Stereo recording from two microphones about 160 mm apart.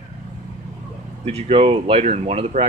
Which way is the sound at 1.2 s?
40° right (ahead or behind).